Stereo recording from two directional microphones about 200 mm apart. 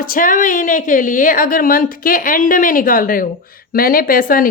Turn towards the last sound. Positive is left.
turn(degrees=45)  # may be behind; listen again after turning